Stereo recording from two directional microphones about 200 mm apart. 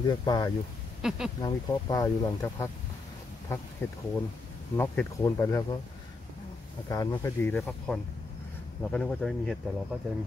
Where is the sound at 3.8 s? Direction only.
10° left (ahead or behind).